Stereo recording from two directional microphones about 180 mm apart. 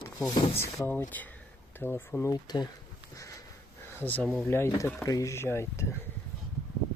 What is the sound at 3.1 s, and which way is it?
Sniff, 15° left (ahead or behind).